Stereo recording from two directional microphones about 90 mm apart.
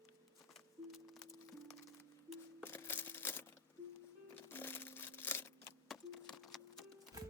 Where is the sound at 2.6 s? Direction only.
25° left (ahead or behind).